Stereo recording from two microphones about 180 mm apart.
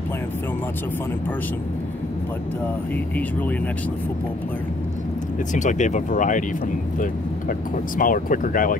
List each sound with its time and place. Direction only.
5.5 s speech: 45° left (ahead or behind)
8.0 s speech: 50° left (ahead or behind)